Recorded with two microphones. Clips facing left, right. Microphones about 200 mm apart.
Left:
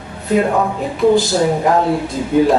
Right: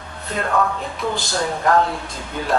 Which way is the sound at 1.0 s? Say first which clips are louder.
Left 13 dB; 35° left (ahead or behind).